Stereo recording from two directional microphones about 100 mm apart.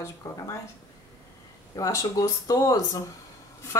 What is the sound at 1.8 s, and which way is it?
Speech, 35° left (ahead or behind).